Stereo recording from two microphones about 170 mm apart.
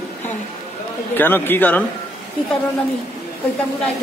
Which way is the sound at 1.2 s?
10° left (ahead or behind).